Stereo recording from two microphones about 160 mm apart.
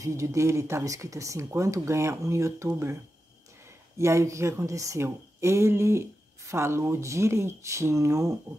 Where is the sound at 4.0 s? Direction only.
20° right (ahead or behind).